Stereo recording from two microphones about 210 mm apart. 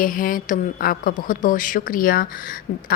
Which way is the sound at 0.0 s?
40° left (ahead or behind).